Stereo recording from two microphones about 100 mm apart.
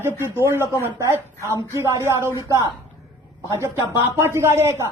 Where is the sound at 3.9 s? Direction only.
30° right (ahead or behind).